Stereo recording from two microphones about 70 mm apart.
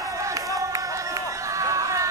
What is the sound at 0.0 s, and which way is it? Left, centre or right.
Run, right.